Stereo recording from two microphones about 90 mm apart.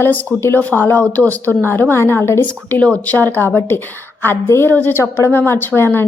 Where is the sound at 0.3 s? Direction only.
25° left (ahead or behind).